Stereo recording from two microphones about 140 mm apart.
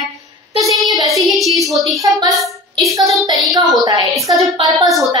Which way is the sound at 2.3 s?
Centre (ahead or behind).